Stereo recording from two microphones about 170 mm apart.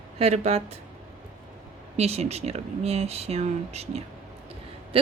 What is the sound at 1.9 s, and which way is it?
A woman's voice, 40° right (ahead or behind).